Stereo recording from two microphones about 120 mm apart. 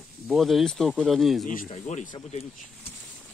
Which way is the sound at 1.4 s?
80° left.